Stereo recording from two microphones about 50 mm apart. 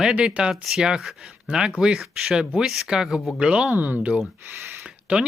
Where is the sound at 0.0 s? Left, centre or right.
Centre.